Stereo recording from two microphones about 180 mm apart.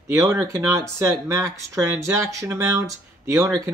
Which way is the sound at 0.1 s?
15° right (ahead or behind).